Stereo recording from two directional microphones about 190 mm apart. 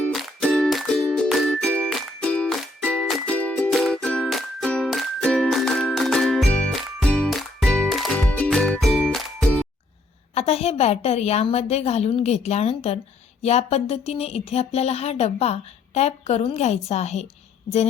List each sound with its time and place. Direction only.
0.1 s music: centre (ahead or behind)
10.3 s speech: 30° left (ahead or behind)